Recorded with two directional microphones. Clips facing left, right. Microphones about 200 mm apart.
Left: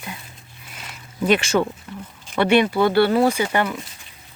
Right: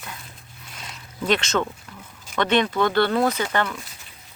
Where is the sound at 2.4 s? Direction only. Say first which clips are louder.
Left 4 dB; 10° left (ahead or behind).